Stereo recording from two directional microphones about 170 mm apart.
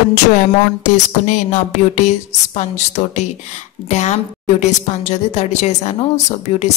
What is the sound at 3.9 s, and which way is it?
A woman's voice, 45° left (ahead or behind).